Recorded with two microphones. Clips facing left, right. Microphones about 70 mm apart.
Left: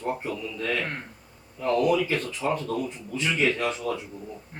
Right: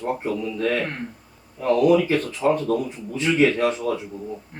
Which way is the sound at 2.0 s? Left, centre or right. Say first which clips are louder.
Right 6 dB; right.